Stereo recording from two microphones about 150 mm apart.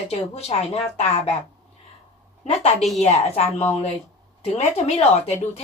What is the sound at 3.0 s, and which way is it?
Speech, 45° left (ahead or behind).